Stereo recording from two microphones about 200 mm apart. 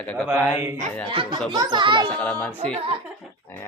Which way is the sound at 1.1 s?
25° right (ahead or behind).